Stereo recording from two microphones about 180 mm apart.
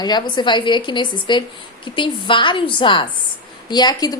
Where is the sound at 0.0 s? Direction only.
25° left (ahead or behind).